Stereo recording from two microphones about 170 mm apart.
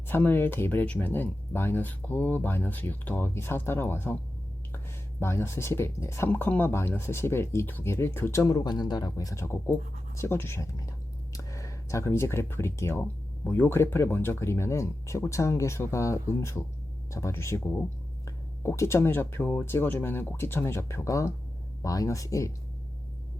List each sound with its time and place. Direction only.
0.1 s speech: 10° left (ahead or behind)
5.2 s speech: 15° left (ahead or behind)